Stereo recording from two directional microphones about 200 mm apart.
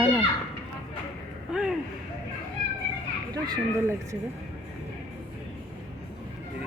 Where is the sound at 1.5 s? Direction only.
5° right (ahead or behind).